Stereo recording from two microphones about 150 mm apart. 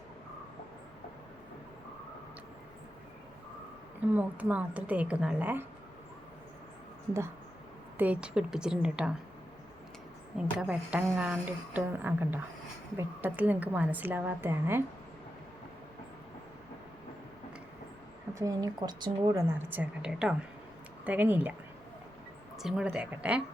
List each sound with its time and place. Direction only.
4.1 s speech: 10° right (ahead or behind)
7.9 s a woman's voice: 10° right (ahead or behind)
10.3 s speech: 5° right (ahead or behind)
18.3 s speech: 25° right (ahead or behind)
19.5 s speech: 10° right (ahead or behind)
22.5 s speech: 5° right (ahead or behind)